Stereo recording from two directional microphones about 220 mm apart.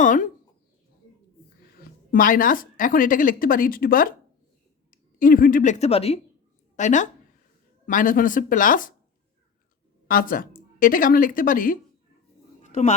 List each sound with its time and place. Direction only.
0.0 s chicken: 35° left (ahead or behind)
1.7 s speech: 40° left (ahead or behind)
10.1 s speech: 40° left (ahead or behind)